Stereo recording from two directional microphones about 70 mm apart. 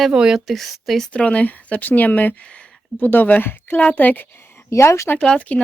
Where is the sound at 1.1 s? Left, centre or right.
Centre; by 5.1 s left.